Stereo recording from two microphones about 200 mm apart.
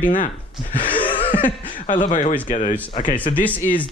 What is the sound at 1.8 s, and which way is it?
Speech, 40° left (ahead or behind).